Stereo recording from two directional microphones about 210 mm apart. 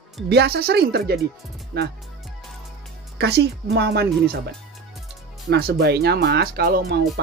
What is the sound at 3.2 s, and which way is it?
Speech, 50° right (ahead or behind).